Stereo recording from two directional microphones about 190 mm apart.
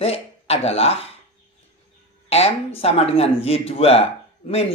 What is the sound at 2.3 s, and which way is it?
Speech, 30° left (ahead or behind).